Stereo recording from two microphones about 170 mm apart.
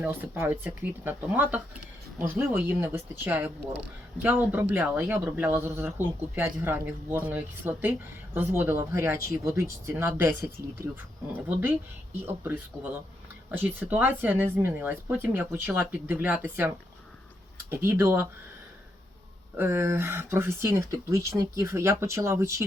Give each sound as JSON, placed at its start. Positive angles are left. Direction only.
{"t": 0.0, "sound": "speech", "side_deg": -10}
{"t": 11.4, "sound": "speech", "side_deg": -15}
{"t": 19.5, "sound": "speech", "side_deg": -15}